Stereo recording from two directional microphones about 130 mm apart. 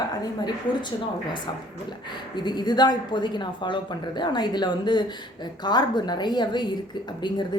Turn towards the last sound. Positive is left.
turn(degrees=35)  # may be behind; listen again after turning